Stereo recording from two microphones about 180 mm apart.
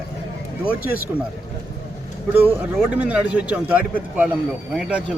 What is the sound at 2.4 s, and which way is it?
Speech, 10° right (ahead or behind).